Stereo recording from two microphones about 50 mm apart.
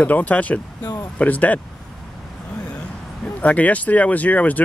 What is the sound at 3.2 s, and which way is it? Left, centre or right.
Speech, left.